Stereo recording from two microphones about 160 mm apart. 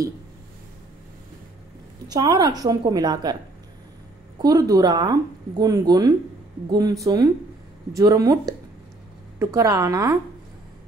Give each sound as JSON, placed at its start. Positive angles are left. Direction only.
{"t": 2.0, "sound": "speech", "side_deg": -25}
{"t": 4.4, "sound": "speech", "side_deg": -25}